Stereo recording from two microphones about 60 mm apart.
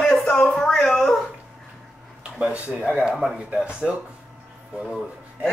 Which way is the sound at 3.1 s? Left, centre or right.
Centre.